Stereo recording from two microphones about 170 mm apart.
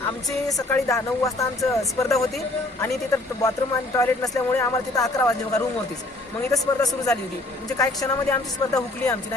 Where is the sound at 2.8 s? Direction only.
20° left (ahead or behind).